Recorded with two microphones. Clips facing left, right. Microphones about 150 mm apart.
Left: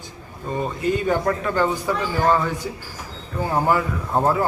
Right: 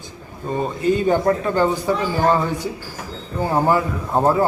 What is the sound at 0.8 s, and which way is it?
Speech, 25° right (ahead or behind).